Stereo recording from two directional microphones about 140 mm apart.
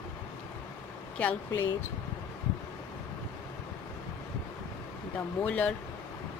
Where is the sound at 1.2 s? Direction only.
10° left (ahead or behind).